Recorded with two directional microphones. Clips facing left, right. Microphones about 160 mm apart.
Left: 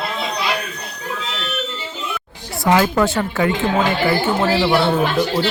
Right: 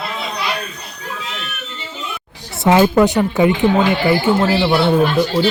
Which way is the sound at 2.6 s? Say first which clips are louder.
Right 4 dB; 20° right (ahead or behind).